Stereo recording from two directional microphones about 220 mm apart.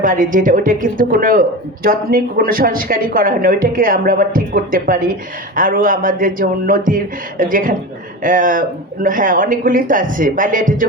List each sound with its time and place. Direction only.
0.0 s speech: 40° right (ahead or behind)